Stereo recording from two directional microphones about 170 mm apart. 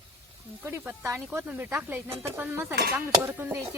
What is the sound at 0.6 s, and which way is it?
Speech, 10° right (ahead or behind).